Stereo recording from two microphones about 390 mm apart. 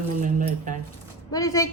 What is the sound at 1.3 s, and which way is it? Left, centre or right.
Speech, centre.